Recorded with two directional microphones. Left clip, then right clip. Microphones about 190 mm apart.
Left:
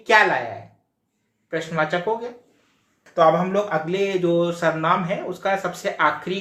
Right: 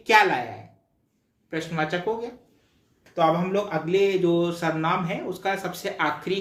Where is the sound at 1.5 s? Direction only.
30° right (ahead or behind).